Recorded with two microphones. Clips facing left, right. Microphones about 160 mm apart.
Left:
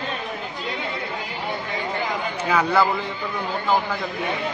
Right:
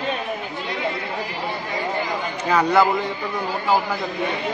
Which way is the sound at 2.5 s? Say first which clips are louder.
Right 3 dB; 5° left (ahead or behind).